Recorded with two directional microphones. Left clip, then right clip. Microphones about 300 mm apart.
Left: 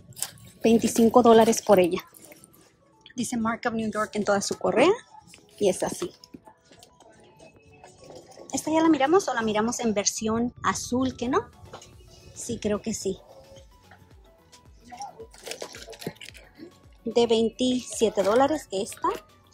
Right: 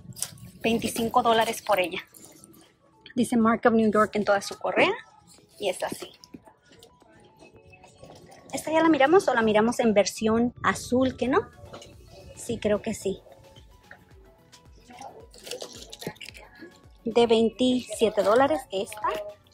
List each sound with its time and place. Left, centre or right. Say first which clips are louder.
0.1 s a sound: left 1 dB; centre
0.6 s speech: left 5 dB; centre
3.2 s speech: right 6 dB; centre
4.2 s speech: even; centre
8.5 s speech: even; centre
12.4 s speech: right 3 dB; centre
15.4 s crunch: even; left
17.1 s speech: right 1 dB; centre